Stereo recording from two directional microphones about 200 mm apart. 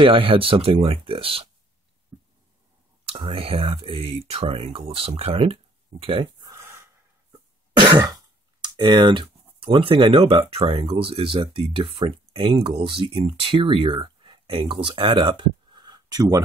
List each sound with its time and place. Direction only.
0.0 s speech: 25° right (ahead or behind)
2.1 s a sound: 15° right (ahead or behind)
3.1 s speech: 30° right (ahead or behind)
6.5 s gasp: 15° right (ahead or behind)
8.5 s speech: 20° right (ahead or behind)